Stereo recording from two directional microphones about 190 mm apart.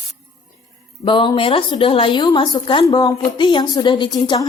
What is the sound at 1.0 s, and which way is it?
A woman's voice, 25° left (ahead or behind).